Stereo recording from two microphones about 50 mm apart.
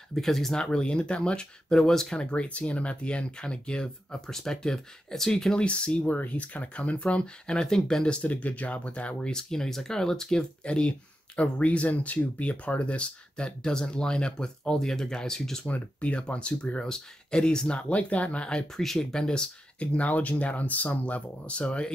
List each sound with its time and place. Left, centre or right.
0.1 s speech: centre
5.6 s speech: left
6.0 s speech: left; by 8.2 s centre
8.2 s speech: left
9.4 s speech: centre
15.6 s speech: left
18.7 s speech: centre
19.1 s speech: centre